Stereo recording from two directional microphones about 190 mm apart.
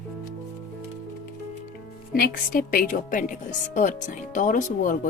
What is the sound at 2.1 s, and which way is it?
A woman's voice, 50° left (ahead or behind).